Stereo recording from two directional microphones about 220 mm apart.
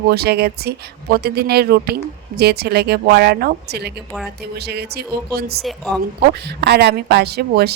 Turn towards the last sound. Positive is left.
turn(degrees=-45)  # may be behind; listen again after turning